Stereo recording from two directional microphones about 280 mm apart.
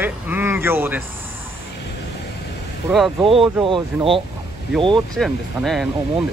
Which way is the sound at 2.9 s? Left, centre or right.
Centre.